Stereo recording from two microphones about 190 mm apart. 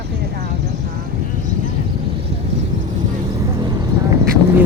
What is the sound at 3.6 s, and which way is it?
Vehicle, 20° right (ahead or behind).